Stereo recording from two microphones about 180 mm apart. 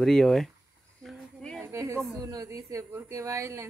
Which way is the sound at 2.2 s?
20° right (ahead or behind).